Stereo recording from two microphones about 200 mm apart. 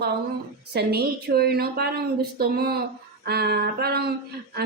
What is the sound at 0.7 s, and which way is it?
A woman's voice, 50° right (ahead or behind).